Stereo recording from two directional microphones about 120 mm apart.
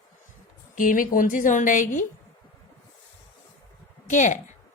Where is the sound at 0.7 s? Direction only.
90° left.